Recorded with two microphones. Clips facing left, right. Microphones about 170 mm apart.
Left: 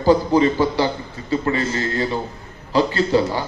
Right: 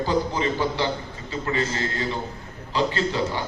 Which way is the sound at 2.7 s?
40° left (ahead or behind).